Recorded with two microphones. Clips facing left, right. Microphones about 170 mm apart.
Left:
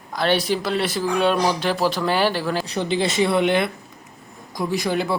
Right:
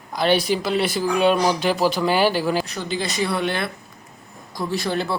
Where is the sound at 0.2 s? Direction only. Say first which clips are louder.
Right 1 dB; 5° right (ahead or behind).